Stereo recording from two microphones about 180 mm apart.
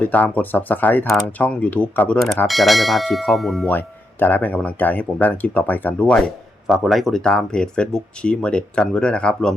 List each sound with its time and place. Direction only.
0.0 s speech: 10° left (ahead or behind)